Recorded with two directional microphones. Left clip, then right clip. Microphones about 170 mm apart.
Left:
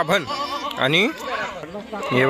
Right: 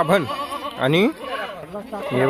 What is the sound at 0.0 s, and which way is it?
Speech, 5° right (ahead or behind).